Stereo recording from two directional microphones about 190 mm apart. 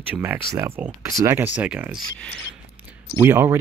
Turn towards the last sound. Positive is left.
turn(degrees=-10)  # may be behind; listen again after turning